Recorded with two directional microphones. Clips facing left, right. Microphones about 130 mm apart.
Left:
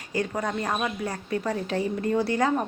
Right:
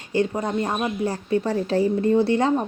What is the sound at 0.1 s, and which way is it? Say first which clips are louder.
Speech: right 5 dB; 25° right (ahead or behind).